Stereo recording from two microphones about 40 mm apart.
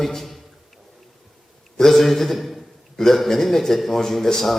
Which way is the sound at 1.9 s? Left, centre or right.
Centre.